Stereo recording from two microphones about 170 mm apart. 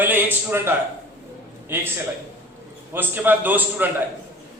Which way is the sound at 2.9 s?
10° right (ahead or behind).